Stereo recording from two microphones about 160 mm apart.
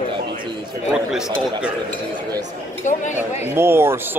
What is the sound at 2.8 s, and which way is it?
Speech, 50° left (ahead or behind).